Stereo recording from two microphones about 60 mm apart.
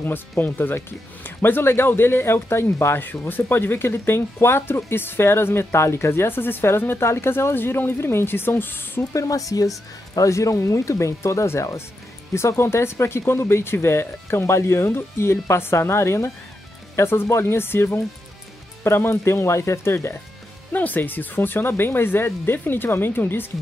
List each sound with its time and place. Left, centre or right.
0.0 s speech: left
9.1 s speech: left
10.1 s speech: left
20.7 s speech: left